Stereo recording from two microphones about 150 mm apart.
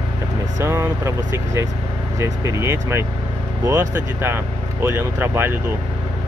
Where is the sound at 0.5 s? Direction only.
15° right (ahead or behind).